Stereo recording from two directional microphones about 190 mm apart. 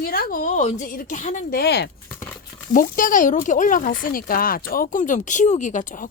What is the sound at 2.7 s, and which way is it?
Speech, 45° left (ahead or behind).